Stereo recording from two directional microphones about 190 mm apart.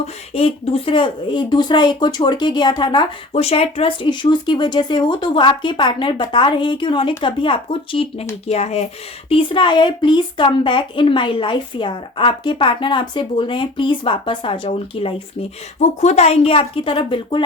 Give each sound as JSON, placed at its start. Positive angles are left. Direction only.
{"t": 0.0, "sound": "speech", "side_deg": 30}